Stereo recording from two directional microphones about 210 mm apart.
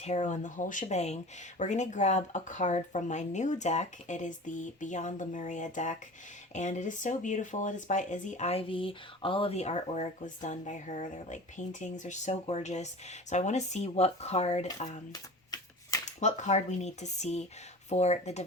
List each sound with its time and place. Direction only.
0.0 s speech: 35° left (ahead or behind)
15.1 s shuffling cards: 20° left (ahead or behind)
16.2 s speech: 35° left (ahead or behind)